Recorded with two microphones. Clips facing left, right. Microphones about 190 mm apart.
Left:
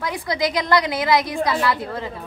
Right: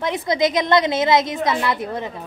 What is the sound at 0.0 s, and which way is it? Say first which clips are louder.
A woman's voice: right 4 dB; 20° right (ahead or behind).